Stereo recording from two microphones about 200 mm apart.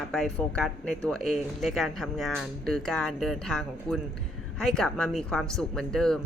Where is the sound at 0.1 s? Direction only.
Centre (ahead or behind).